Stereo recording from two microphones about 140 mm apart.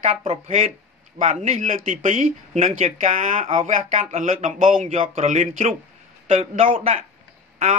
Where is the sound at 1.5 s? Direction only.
65° right (ahead or behind).